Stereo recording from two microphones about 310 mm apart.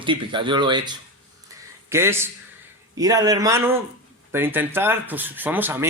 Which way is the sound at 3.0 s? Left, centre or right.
Centre.